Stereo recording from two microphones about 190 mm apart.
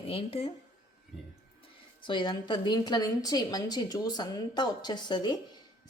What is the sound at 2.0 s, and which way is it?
A woman's voice, 25° left (ahead or behind).